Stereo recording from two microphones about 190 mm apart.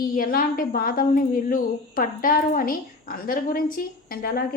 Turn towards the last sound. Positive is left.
turn(degrees=50)  # may be behind; listen again after turning